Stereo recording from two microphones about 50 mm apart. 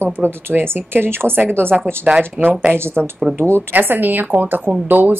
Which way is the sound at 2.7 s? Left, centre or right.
Right.